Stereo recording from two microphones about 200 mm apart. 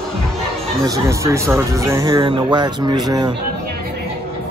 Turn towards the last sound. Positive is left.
turn(degrees=-20)  # may be behind; listen again after turning